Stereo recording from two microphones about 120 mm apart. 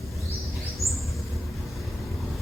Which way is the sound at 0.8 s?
25° left (ahead or behind).